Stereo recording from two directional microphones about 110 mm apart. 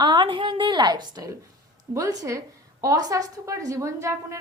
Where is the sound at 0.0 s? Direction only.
40° right (ahead or behind).